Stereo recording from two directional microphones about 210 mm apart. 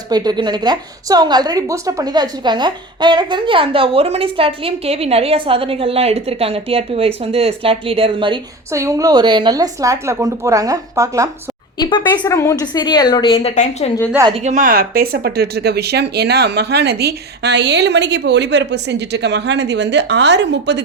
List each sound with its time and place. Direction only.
0.1 s a woman's voice: 20° right (ahead or behind)
11.8 s a woman's voice: 20° left (ahead or behind)
14.1 s a woman's voice: 15° right (ahead or behind)
14.3 s speech: 35° right (ahead or behind); by 20.8 s 55° right (ahead or behind)